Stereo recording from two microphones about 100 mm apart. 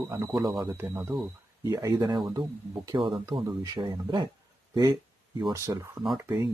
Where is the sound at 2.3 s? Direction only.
40° right (ahead or behind).